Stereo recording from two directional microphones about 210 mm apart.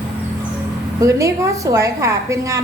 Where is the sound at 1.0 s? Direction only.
15° right (ahead or behind).